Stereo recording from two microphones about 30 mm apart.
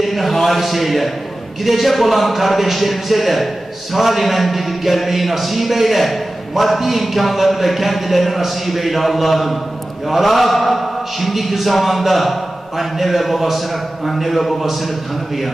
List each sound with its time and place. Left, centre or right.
0.0 s a man's voice: centre